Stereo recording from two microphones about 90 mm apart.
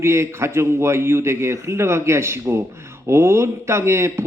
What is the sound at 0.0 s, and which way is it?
A man's voice, 30° right (ahead or behind).